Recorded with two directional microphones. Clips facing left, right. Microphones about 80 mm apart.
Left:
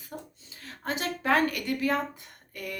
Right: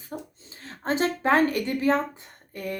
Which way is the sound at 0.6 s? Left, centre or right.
Right.